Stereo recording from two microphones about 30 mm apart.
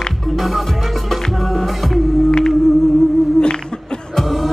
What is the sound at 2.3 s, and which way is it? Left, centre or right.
Music, left.